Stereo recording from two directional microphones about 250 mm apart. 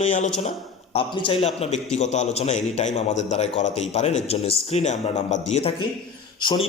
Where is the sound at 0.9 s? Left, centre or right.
Left.